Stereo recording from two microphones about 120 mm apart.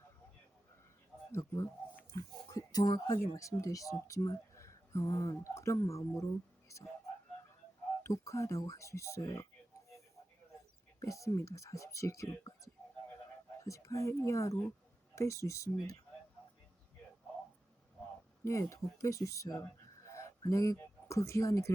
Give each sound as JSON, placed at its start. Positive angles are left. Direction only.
{"t": 1.3, "sound": "a sound", "side_deg": 25}
{"t": 2.1, "sound": "speech", "side_deg": 30}
{"t": 8.0, "sound": "speech", "side_deg": 25}
{"t": 11.0, "sound": "speech", "side_deg": 25}
{"t": 18.4, "sound": "speech", "side_deg": 25}